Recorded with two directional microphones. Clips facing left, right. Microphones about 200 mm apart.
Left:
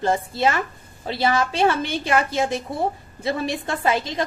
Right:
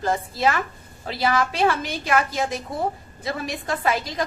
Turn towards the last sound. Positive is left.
turn(degrees=25)  # may be behind; listen again after turning